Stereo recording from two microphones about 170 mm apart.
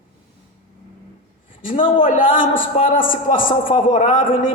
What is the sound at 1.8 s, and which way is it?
Speech, 30° left (ahead or behind).